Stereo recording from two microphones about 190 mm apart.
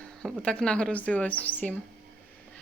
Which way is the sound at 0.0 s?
5° left (ahead or behind).